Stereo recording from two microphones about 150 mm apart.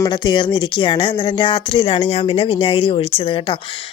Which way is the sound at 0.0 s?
30° left (ahead or behind).